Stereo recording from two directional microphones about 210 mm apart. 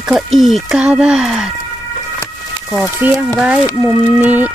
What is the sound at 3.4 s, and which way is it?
Speech, 5° right (ahead or behind).